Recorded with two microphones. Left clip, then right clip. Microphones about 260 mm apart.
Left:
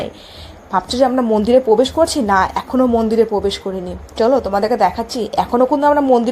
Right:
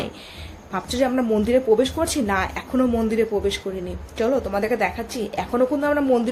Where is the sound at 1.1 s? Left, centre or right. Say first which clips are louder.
Left 6 dB; centre.